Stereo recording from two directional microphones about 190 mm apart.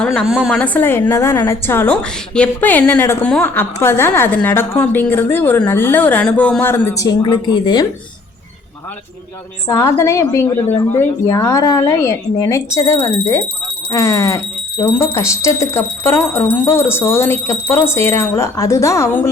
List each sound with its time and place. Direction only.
0.0 s a woman's voice: centre (ahead or behind); by 7.9 s 25° left (ahead or behind)
9.6 s a woman's voice: 15° left (ahead or behind)